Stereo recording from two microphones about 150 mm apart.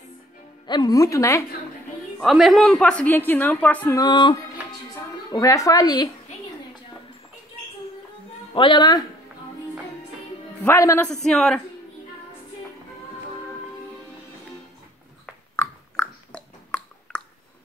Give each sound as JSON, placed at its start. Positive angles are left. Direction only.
{"t": 0.7, "sound": "speech", "side_deg": 30}
{"t": 2.1, "sound": "a woman's voice", "side_deg": 0}
{"t": 4.0, "sound": "speech", "side_deg": 30}
{"t": 8.5, "sound": "speech", "side_deg": 30}
{"t": 10.6, "sound": "a woman's voice", "side_deg": 15}
{"t": 11.2, "sound": "speech", "side_deg": 5}
{"t": 15.5, "sound": "a sound", "side_deg": 15}